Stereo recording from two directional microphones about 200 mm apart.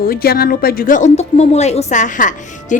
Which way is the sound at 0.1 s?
50° left (ahead or behind).